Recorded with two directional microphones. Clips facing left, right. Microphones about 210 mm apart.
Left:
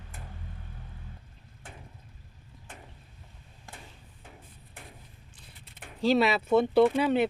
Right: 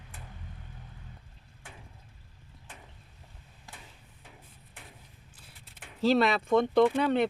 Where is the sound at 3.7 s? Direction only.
55° left (ahead or behind).